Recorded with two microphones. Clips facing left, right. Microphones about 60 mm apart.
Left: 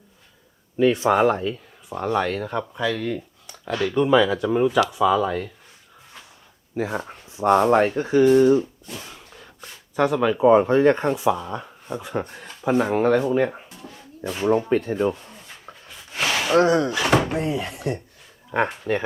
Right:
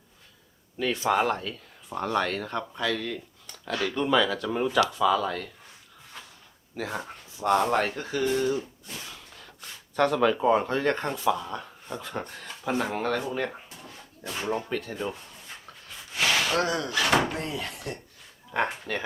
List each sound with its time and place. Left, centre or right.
0.8 s speech: centre
6.7 s speech: centre
9.0 s a sound: centre
9.9 s speech: centre; by 15.1 s left
16.3 s gasp: centre
16.6 s speech: left
16.9 s door: centre
17.2 s speech: centre